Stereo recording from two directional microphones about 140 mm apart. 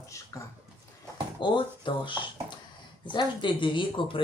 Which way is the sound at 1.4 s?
35° left (ahead or behind).